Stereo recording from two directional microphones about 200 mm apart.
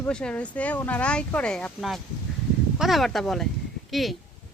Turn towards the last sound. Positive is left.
turn(degrees=0)  # may be behind; listen again after turning